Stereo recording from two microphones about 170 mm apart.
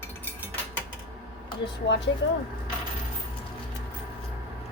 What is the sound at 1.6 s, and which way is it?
Speech, 90° left.